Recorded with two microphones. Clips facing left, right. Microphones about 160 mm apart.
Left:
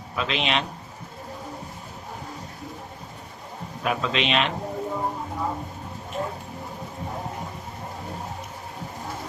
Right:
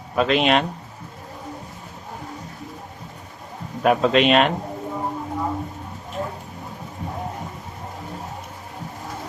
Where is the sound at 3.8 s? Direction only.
50° right (ahead or behind).